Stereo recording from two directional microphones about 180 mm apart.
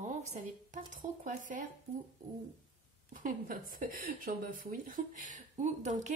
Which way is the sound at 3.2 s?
50° right (ahead or behind).